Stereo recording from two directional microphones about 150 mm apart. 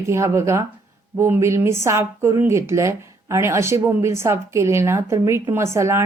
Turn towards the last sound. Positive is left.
turn(degrees=-20)  # may be behind; listen again after turning